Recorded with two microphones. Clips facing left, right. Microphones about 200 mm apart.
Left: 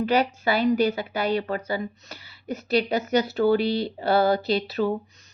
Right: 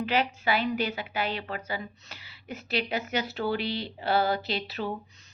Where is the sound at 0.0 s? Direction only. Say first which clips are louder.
Left 5 dB; 40° left (ahead or behind).